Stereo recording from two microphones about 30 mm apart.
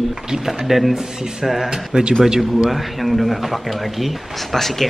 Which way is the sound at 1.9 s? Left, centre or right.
Right.